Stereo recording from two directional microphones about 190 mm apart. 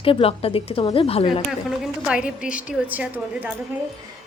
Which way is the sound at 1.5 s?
5° right (ahead or behind).